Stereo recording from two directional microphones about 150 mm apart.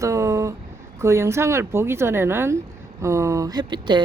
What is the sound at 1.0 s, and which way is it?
Speech, 20° right (ahead or behind).